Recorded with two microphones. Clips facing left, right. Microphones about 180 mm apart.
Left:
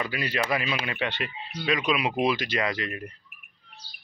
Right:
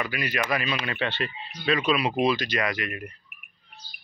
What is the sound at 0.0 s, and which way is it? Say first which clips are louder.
Speech: even; 30° left (ahead or behind).